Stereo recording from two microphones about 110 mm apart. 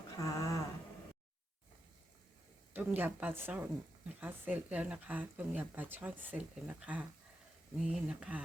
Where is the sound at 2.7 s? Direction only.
15° right (ahead or behind).